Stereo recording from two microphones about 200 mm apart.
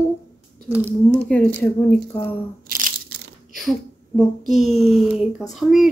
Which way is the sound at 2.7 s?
45° right (ahead or behind).